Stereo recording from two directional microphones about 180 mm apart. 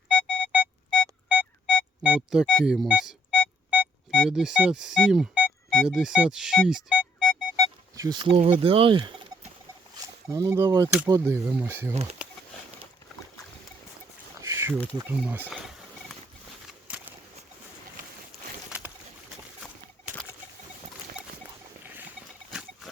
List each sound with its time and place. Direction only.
0.1 s music: 5° left (ahead or behind)
0.5 s music: 5° right (ahead or behind)
5.9 s speech: 5° right (ahead or behind)
7.5 s a sound: 20° right (ahead or behind)
8.4 s speech: 30° right (ahead or behind)
10.2 s speech: 15° right (ahead or behind)
14.4 s a sound: 15° right (ahead or behind)
21.8 s rodents: 10° right (ahead or behind)